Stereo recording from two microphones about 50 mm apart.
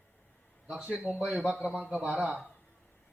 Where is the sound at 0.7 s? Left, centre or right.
Centre.